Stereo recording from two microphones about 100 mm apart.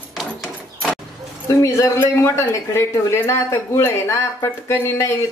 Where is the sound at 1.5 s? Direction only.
30° left (ahead or behind).